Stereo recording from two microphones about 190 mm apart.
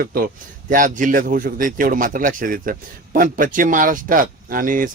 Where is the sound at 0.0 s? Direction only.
50° right (ahead or behind).